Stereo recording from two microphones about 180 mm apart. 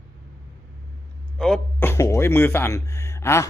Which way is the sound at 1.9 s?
15° left (ahead or behind).